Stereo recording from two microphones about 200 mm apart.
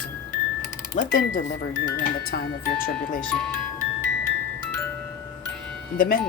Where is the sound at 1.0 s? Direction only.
40° left (ahead or behind).